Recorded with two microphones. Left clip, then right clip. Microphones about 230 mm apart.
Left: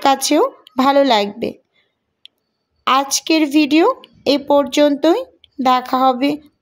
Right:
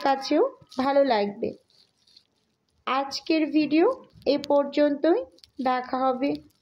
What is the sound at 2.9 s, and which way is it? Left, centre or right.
Speech, left.